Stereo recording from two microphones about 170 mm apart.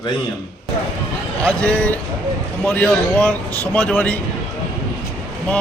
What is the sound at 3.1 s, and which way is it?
A man's voice, 10° left (ahead or behind).